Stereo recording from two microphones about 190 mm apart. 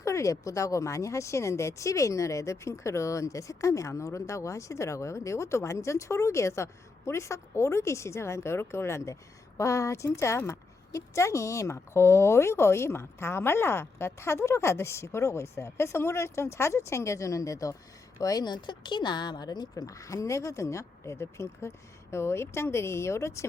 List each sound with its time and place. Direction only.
0.0 s a woman's voice: 15° left (ahead or behind)